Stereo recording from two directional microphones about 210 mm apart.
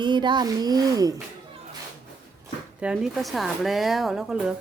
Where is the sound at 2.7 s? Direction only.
5° right (ahead or behind).